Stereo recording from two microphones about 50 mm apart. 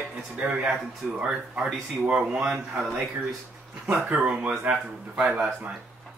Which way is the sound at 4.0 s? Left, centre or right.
Right.